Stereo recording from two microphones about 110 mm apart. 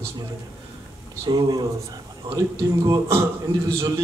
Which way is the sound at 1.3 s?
35° right (ahead or behind).